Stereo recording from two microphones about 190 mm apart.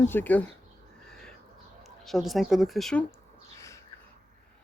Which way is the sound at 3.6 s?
15° left (ahead or behind).